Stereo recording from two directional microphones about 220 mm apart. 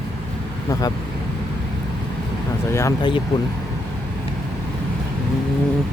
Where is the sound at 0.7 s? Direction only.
15° left (ahead or behind).